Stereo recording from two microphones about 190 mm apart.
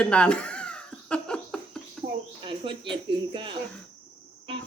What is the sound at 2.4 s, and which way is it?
Cricket, 25° right (ahead or behind).